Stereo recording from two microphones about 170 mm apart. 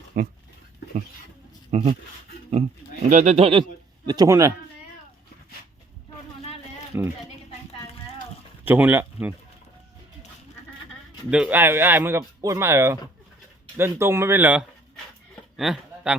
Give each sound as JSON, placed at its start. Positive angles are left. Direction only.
{"t": 0.1, "sound": "speech", "side_deg": -55}
{"t": 1.7, "sound": "speech", "side_deg": -40}
{"t": 3.1, "sound": "speech", "side_deg": -40}
{"t": 4.0, "sound": "speech", "side_deg": -25}
{"t": 6.9, "sound": "speech", "side_deg": -15}
{"t": 8.6, "sound": "speech", "side_deg": -10}
{"t": 11.3, "sound": "speech", "side_deg": -5}
{"t": 15.5, "sound": "a sound", "side_deg": 0}